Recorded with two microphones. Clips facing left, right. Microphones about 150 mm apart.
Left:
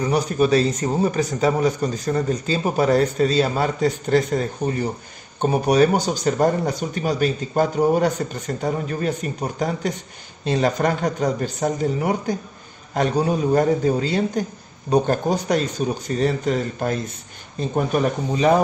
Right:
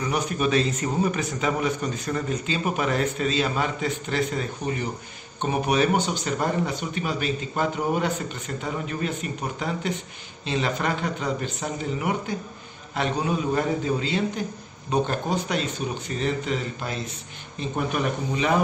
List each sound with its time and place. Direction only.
0.0 s a man's voice: 35° left (ahead or behind)